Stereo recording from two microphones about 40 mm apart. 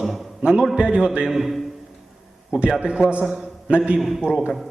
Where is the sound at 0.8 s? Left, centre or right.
Right.